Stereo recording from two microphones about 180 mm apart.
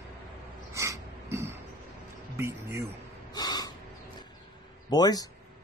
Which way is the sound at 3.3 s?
20° left (ahead or behind).